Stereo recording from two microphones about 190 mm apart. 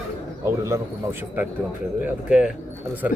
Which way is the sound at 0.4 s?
15° right (ahead or behind).